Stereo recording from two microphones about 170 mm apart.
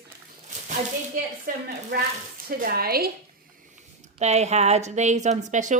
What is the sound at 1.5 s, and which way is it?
Speech, 55° right (ahead or behind).